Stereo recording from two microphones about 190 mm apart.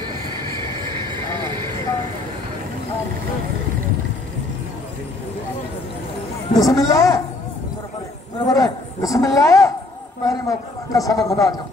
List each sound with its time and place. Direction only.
6.5 s a man's voice: 20° left (ahead or behind)
8.5 s a sound: 20° left (ahead or behind)
10.2 s a man's voice: 15° left (ahead or behind)